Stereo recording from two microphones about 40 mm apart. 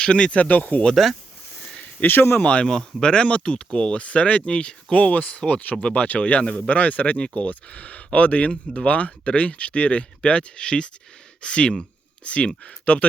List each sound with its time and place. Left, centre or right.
0.0 s speech: left
1.0 s speech: centre
2.0 s speech: left
2.4 s speech: left
2.6 s speech: centre; by 6.4 s left
6.4 s speech: left
6.7 s speech: left